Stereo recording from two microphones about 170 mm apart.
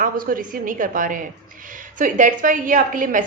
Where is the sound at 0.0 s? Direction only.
55° right (ahead or behind).